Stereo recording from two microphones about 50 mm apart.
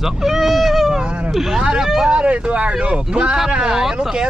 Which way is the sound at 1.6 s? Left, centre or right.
Centre.